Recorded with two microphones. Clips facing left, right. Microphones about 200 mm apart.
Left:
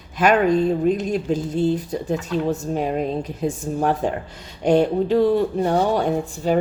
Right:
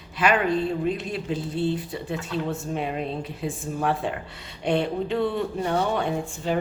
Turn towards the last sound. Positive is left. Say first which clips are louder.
# left 6 dB
turn(degrees=40)  # may be behind; listen again after turning